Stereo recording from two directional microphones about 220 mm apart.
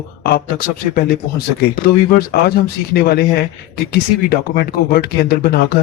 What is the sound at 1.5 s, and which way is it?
Speech, 45° left (ahead or behind).